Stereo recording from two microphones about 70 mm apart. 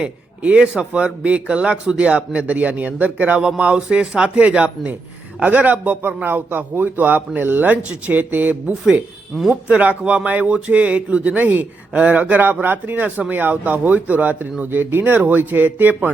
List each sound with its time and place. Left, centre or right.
0.0 s a man's voice: centre